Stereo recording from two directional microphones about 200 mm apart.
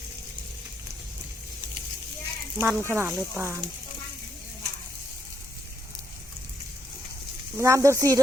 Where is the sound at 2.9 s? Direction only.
10° right (ahead or behind).